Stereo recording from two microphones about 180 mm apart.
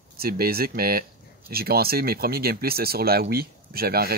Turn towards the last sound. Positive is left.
turn(degrees=-60)  # may be behind; listen again after turning